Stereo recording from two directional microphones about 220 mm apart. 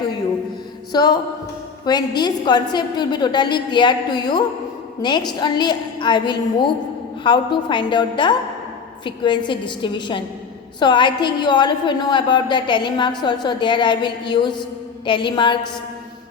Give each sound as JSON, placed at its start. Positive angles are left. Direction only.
{"t": 0.9, "sound": "a woman's voice", "side_deg": 20}